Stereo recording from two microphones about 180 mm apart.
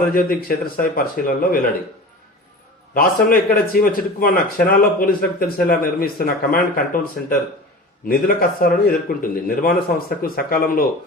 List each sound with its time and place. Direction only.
0.1 s speech: 55° left (ahead or behind)
2.9 s speech: 55° left (ahead or behind)